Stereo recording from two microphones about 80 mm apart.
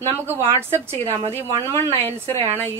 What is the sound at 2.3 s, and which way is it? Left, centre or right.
Speech, left.